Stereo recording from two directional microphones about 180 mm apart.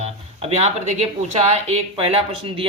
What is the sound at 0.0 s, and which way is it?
Speech, 35° right (ahead or behind).